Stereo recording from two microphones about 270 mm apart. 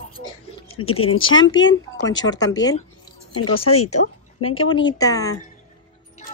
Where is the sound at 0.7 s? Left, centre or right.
Left.